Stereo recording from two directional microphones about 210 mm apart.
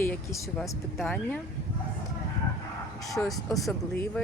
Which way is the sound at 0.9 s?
5° left (ahead or behind).